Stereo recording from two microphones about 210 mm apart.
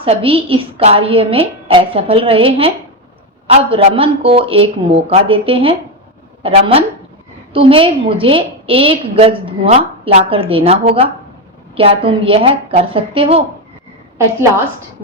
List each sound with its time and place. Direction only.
0.0 s a woman's voice: 25° right (ahead or behind)